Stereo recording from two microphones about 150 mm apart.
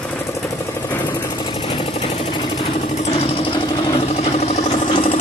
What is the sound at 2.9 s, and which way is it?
Vehicle, 45° left (ahead or behind).